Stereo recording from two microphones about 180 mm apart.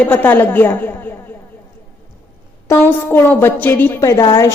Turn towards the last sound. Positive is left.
turn(degrees=20)  # may be behind; listen again after turning